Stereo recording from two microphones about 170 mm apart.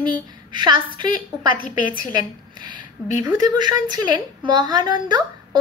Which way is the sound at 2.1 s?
25° right (ahead or behind).